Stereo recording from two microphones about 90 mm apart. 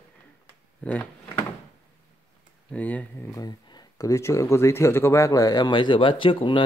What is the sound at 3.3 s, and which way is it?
Speech, 50° left (ahead or behind).